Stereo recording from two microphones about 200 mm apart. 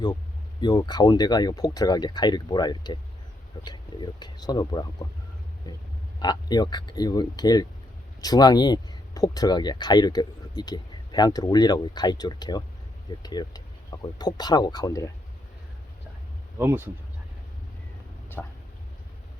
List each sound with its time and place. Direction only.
0.6 s speech: 20° left (ahead or behind)
16.6 s speech: 10° right (ahead or behind)
18.4 s speech: 5° left (ahead or behind)